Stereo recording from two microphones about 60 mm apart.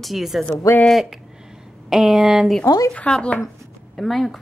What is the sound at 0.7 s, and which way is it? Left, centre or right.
Speech, left.